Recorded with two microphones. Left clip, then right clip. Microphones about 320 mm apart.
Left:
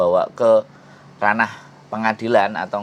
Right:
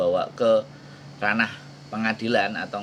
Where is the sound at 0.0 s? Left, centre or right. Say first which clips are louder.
Left 6 dB; left.